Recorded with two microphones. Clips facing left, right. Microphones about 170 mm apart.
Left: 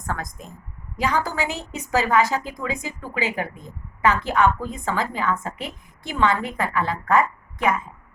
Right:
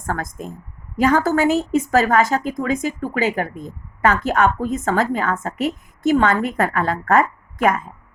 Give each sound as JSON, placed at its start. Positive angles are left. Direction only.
{"t": 0.0, "sound": "a woman's voice", "side_deg": -45}